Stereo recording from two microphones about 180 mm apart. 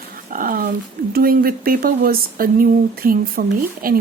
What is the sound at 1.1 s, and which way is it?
Speech, 55° right (ahead or behind).